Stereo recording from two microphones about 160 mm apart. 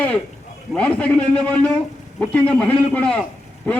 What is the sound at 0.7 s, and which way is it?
A man's voice, 10° left (ahead or behind).